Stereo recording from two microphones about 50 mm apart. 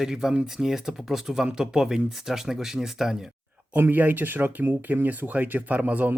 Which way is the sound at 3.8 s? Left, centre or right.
Right.